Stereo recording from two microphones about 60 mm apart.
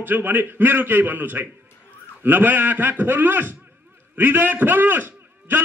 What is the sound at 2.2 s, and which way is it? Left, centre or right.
A man's voice, right.